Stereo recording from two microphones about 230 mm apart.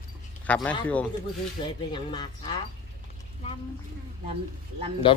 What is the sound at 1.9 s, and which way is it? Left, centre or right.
Speech, centre.